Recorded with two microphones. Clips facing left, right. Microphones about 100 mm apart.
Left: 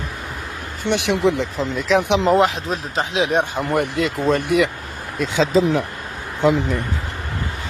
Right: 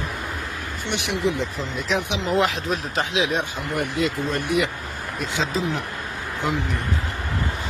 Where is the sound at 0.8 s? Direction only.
80° left.